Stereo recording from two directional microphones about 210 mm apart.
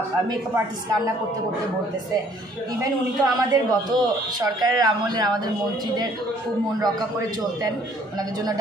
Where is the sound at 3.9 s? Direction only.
20° right (ahead or behind).